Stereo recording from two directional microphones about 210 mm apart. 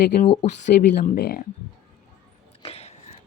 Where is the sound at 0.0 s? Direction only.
40° left (ahead or behind).